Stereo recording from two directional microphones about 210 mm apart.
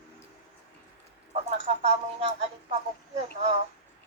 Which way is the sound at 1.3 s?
30° right (ahead or behind).